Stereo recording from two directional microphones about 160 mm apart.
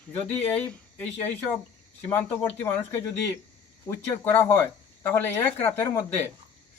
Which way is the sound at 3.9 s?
15° left (ahead or behind).